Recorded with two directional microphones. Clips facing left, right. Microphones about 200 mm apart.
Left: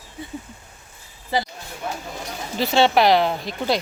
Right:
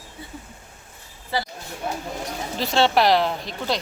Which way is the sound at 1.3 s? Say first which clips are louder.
Left 3 dB; 20° left (ahead or behind).